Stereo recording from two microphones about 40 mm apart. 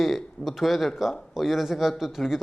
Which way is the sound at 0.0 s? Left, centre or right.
Centre.